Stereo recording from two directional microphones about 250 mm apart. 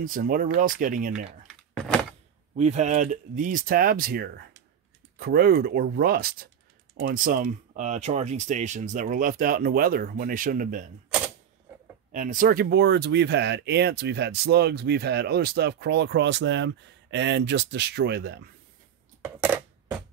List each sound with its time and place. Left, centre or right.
0.0 s speech: right
1.5 s keys jangling: centre
2.5 s speech: right
12.1 s speech: right
19.2 s coin: centre